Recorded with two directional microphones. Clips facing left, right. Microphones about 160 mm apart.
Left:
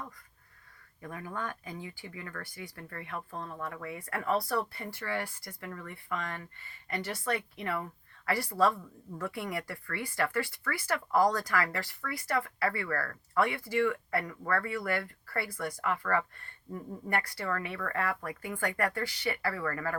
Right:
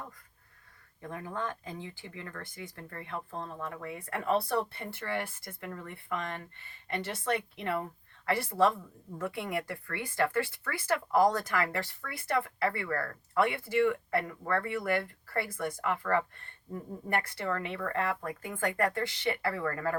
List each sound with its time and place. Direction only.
1.0 s speech: 25° right (ahead or behind)